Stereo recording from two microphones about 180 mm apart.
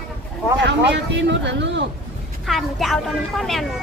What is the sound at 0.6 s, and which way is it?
Speech, 70° right (ahead or behind).